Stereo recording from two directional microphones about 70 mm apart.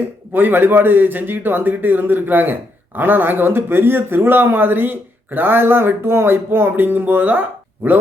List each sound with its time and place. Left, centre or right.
0.3 s a man's voice: right